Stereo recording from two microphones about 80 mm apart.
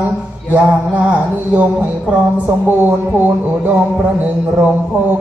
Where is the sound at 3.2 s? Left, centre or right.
Right.